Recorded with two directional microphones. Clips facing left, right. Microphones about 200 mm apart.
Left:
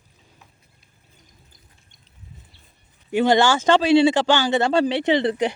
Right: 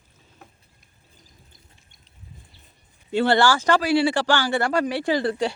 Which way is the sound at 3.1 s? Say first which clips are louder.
Left 2 dB; 15° left (ahead or behind).